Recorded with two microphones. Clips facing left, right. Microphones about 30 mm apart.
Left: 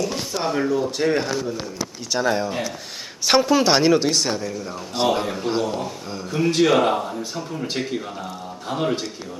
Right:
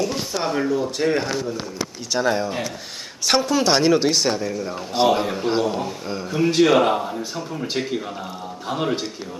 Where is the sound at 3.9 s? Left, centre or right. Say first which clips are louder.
Right 1 dB; centre.